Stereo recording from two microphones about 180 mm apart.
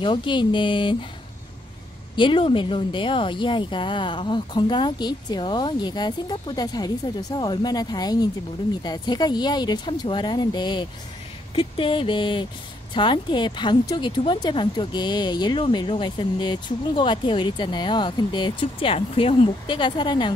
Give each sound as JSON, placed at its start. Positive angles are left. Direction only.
{"t": 0.0, "sound": "speech", "side_deg": 25}
{"t": 2.1, "sound": "speech", "side_deg": 30}